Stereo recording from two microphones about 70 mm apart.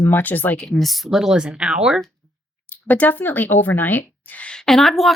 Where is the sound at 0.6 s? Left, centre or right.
Centre.